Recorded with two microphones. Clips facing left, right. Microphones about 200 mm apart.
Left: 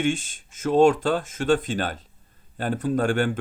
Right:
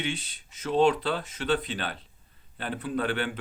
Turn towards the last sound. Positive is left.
turn(degrees=45)  # may be behind; listen again after turning